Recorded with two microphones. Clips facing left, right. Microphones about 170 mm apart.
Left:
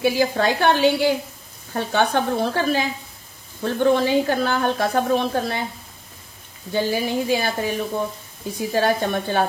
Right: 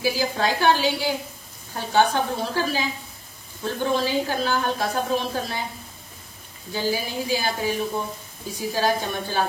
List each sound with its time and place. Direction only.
0.0 s a woman's voice: 60° left (ahead or behind)
6.7 s a woman's voice: 60° left (ahead or behind)